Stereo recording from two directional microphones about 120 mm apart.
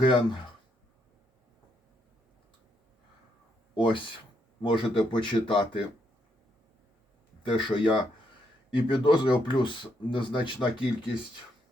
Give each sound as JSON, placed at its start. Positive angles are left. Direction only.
{"t": 0.0, "sound": "speech", "side_deg": 45}
{"t": 3.8, "sound": "speech", "side_deg": 45}
{"t": 7.4, "sound": "speech", "side_deg": 45}